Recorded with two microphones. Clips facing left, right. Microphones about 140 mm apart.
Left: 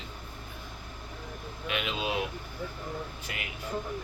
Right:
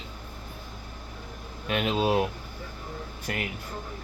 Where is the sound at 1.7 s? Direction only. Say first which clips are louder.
Right 7 dB; 40° right (ahead or behind).